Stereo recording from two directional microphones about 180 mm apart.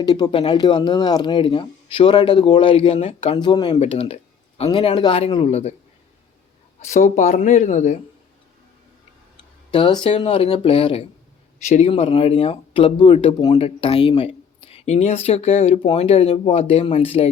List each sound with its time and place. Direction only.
0.0 s speech: 20° left (ahead or behind)
6.8 s speech: 40° left (ahead or behind)
9.7 s speech: 25° left (ahead or behind)
11.6 s speech: 40° left (ahead or behind)